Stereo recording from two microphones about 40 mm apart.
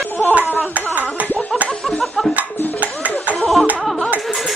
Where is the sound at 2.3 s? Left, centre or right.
Right.